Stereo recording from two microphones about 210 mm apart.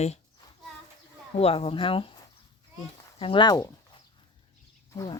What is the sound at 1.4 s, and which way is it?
Speech, 25° left (ahead or behind).